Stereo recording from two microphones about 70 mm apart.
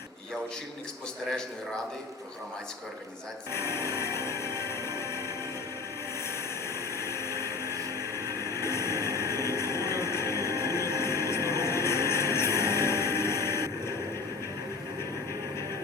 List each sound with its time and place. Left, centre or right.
3.5 s music: left
6.9 s vehicle: left